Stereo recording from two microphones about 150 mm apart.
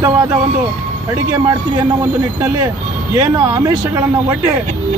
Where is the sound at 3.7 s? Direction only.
15° right (ahead or behind).